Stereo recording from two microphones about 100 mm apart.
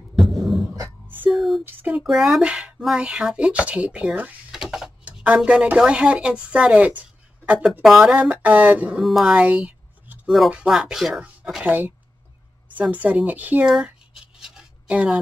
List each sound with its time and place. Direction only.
0.2 s beatboxing: centre (ahead or behind)
1.0 s a sound: 20° right (ahead or behind)
1.3 s a sound: centre (ahead or behind)
1.6 s speech: 20° right (ahead or behind)
2.0 s speech: centre (ahead or behind)
7.0 s a sound: 15° right (ahead or behind)
7.8 s speech: 5° right (ahead or behind)
9.0 s a sound: centre (ahead or behind)
10.5 s speech: 10° right (ahead or behind)
11.6 s speech: 15° right (ahead or behind)
12.9 s speech: 15° right (ahead or behind)
13.7 s writing: 10° right (ahead or behind)